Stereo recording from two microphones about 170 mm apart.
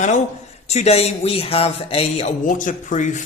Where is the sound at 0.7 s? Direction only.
40° left (ahead or behind).